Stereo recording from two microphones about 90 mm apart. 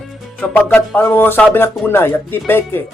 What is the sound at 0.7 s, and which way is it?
Speech, 25° left (ahead or behind).